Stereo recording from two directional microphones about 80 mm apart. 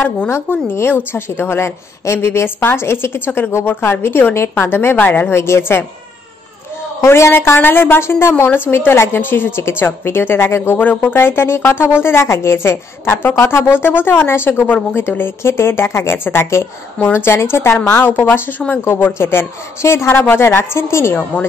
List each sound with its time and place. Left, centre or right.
0.3 s a woman's voice: left
7.0 s a woman's voice: left